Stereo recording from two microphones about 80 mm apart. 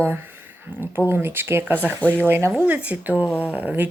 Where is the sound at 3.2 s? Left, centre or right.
Left.